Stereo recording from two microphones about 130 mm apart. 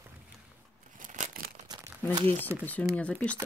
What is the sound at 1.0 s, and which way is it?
Tearing, 80° right.